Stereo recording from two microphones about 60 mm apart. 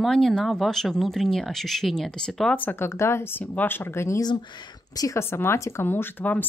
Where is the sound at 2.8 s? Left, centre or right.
Left.